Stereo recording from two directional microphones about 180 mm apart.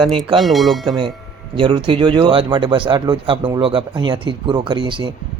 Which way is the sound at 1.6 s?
30° right (ahead or behind).